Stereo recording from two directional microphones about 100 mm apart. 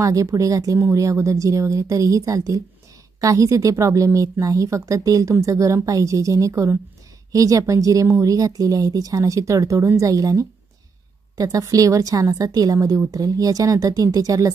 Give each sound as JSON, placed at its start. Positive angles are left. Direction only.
{"t": 0.0, "sound": "a woman's voice", "side_deg": -35}